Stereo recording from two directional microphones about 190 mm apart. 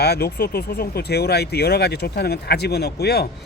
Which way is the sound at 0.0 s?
55° left (ahead or behind).